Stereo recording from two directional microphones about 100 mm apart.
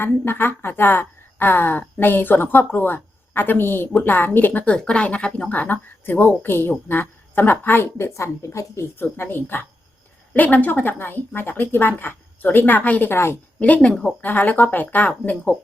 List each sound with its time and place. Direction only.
0.0 s a woman's voice: 20° left (ahead or behind)